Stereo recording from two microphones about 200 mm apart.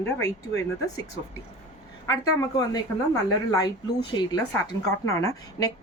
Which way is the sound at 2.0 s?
15° left (ahead or behind).